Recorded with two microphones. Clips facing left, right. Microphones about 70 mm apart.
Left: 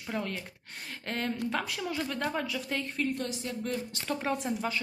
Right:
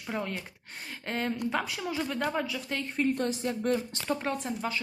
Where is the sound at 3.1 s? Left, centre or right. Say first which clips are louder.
Right 5 dB; right.